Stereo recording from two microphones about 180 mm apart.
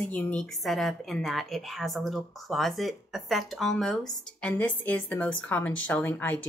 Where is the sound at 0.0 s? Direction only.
5° left (ahead or behind).